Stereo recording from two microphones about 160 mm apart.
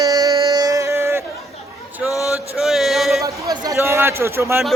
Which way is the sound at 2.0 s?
20° left (ahead or behind).